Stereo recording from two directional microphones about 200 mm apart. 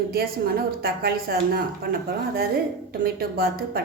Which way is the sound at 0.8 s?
50° right (ahead or behind).